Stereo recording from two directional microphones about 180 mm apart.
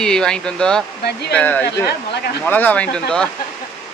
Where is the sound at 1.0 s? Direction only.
65° left (ahead or behind).